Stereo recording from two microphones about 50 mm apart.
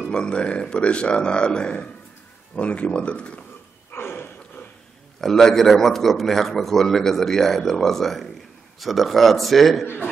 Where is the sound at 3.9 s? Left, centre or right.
Left.